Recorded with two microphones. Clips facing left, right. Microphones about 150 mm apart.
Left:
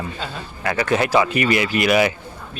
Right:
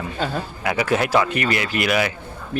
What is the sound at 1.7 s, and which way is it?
Speech, centre (ahead or behind).